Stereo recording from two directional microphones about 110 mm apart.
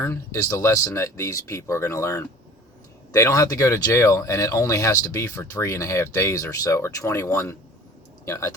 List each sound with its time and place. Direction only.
0.0 s speech: 25° left (ahead or behind)